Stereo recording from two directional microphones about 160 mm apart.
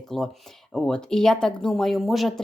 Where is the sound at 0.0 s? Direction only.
5° left (ahead or behind).